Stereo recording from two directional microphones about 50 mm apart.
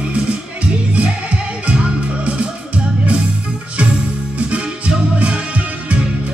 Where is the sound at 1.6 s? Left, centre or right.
Right.